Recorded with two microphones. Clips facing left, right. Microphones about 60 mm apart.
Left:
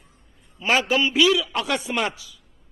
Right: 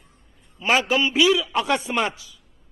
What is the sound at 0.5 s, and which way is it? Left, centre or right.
Speech, centre.